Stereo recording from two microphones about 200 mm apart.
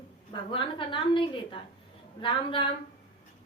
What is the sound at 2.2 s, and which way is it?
Speech, 25° left (ahead or behind).